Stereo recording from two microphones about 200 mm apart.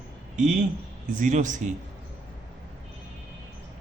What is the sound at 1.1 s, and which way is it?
Speech, 40° right (ahead or behind).